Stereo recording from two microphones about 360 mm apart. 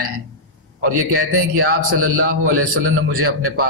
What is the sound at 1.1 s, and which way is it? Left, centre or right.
A man's voice, right.